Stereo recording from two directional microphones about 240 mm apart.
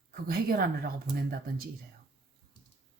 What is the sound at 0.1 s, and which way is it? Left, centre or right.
Speech, right.